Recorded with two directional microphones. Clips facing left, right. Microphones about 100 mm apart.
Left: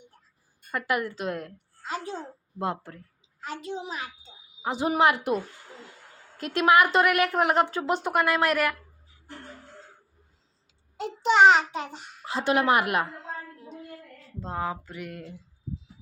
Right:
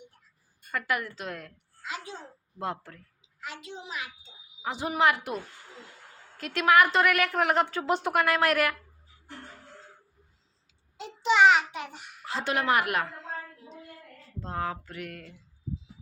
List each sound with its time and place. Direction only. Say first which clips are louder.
0.7 s a woman's voice: left 3 dB; 20° left (ahead or behind)
1.8 s a child's voice: left 5 dB; 40° left (ahead or behind)
2.6 s a woman's voice: left 4 dB; 20° left (ahead or behind)
3.4 s a child's voice: left 6 dB; 40° left (ahead or behind)
4.6 s a woman's voice: left 3 dB; 15° left (ahead or behind)
6.5 s a woman's voice: left 2 dB; 15° left (ahead or behind)
10.9 s a child's voice: left 3 dB; 45° left (ahead or behind); by 12.3 s 30° left (ahead or behind)
12.3 s a woman's voice: left 4 dB; 15° left (ahead or behind)
14.4 s a woman's voice: left 2 dB; 10° left (ahead or behind)